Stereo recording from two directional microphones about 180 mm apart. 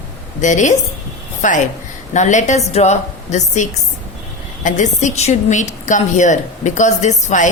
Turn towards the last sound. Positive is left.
turn(degrees=40)  # may be behind; listen again after turning